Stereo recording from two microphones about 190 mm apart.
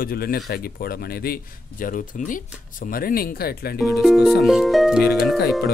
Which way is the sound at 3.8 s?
Centre (ahead or behind).